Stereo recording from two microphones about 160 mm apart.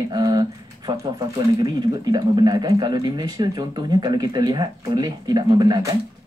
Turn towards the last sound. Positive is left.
turn(degrees=-25)  # may be behind; listen again after turning